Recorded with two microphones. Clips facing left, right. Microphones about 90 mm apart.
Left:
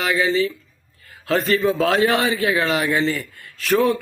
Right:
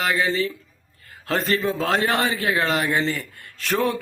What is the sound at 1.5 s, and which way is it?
Speech, centre (ahead or behind).